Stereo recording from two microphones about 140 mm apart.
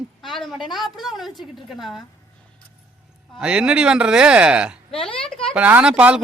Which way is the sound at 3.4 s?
5° right (ahead or behind).